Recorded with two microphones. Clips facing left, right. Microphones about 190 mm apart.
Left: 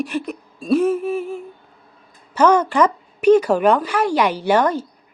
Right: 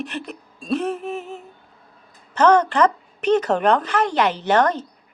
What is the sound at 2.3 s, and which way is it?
Speech, 10° left (ahead or behind).